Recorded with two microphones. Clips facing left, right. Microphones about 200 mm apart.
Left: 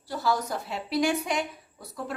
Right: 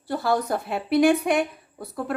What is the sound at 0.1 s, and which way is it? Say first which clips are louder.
A woman's voice: right 5 dB; 55° right (ahead or behind).